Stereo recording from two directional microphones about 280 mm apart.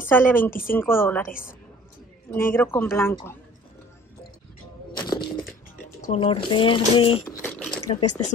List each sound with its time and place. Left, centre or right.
0.0 s speech: centre
0.5 s speech: left
0.7 s speech: centre
2.3 s speech: centre
4.9 s a sound: centre
5.9 s speech: left
7.4 s a sound: centre
8.0 s speech: left